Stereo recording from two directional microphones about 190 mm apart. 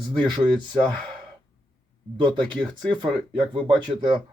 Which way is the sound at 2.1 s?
25° right (ahead or behind).